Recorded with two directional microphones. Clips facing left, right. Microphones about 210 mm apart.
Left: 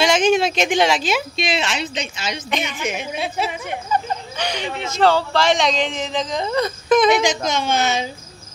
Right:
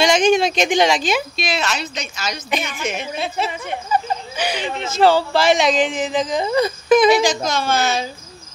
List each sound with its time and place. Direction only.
0.0 s speech: 5° left (ahead or behind)
1.3 s a woman's voice: 30° left (ahead or behind)
2.8 s a woman's voice: 10° left (ahead or behind)
3.9 s a sound: 5° right (ahead or behind)
4.8 s speech: 5° right (ahead or behind)
7.4 s a woman's voice: 20° left (ahead or behind)